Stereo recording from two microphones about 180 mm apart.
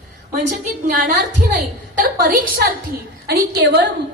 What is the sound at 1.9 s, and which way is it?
Speech, 50° right (ahead or behind).